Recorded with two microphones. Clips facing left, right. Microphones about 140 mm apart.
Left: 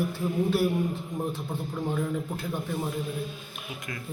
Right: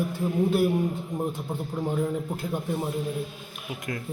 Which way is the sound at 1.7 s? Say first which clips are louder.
Right 2 dB; 10° right (ahead or behind).